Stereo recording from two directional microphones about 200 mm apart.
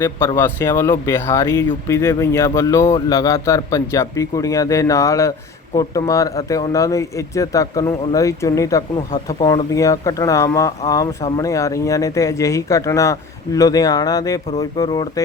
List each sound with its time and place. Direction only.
0.3 s speech: 10° left (ahead or behind)